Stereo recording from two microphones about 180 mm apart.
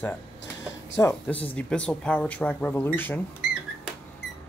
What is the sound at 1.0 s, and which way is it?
Speech, 15° left (ahead or behind).